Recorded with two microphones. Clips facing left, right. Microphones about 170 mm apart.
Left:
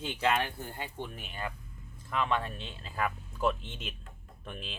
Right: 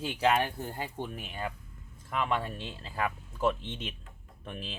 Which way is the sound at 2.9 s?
5° right (ahead or behind).